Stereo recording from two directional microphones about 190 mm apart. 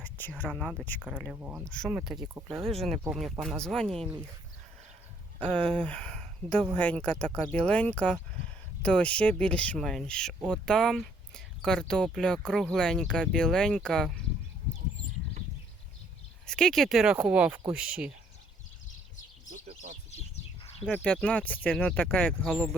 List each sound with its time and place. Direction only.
0.0 s a sound: 10° left (ahead or behind)
0.4 s speech: centre (ahead or behind)
5.4 s speech: 5° left (ahead or behind)
16.5 s speech: 5° left (ahead or behind)
19.5 s bird: 40° right (ahead or behind)
20.1 s bird: 35° left (ahead or behind)
20.9 s speech: 5° left (ahead or behind)